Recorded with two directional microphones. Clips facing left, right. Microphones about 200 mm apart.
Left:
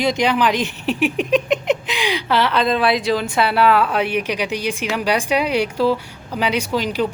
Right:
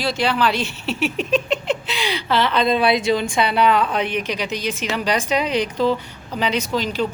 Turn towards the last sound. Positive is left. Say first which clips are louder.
# left 2 dB
turn(degrees=10)  # may be behind; listen again after turning